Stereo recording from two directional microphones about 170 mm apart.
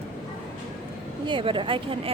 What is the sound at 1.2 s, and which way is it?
Speech, 30° right (ahead or behind).